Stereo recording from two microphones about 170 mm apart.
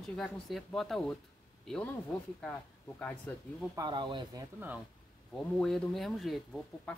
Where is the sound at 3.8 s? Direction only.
25° right (ahead or behind).